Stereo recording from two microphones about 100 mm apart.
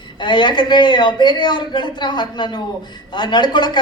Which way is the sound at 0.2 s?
50° left (ahead or behind).